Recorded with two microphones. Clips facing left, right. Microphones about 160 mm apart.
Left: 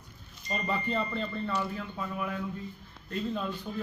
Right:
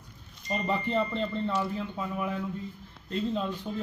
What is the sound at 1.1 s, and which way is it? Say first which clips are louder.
Speech: right 3 dB; 20° right (ahead or behind).